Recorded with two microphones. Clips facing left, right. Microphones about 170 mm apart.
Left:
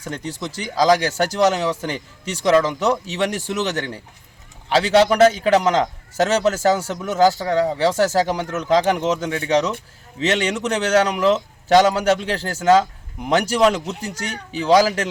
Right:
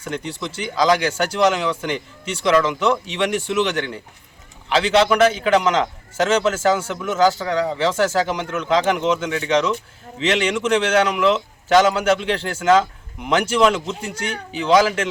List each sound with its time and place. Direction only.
0.0 s a man's voice: 35° left (ahead or behind)